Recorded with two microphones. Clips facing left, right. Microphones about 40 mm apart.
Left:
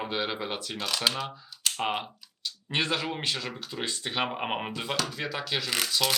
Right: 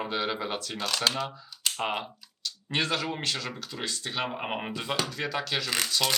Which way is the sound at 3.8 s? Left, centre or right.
Left.